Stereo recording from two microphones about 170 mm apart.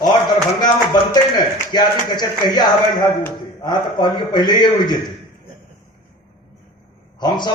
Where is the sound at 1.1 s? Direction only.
25° left (ahead or behind).